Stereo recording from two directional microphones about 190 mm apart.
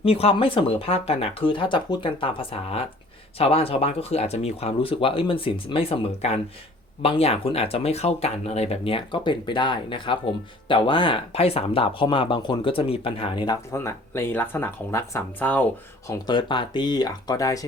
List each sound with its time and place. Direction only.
0.0 s speech: 30° left (ahead or behind); by 15.6 s 10° left (ahead or behind)
16.0 s speech: 25° left (ahead or behind)